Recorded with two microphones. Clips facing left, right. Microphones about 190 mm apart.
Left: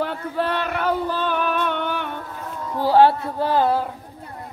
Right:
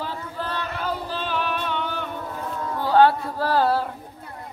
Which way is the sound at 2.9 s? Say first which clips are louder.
Left 2 dB; 25° left (ahead or behind).